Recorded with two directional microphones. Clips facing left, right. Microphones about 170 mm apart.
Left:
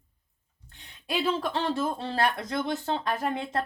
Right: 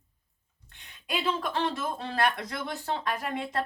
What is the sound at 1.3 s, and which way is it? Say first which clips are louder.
Speech: left 2 dB; 30° left (ahead or behind).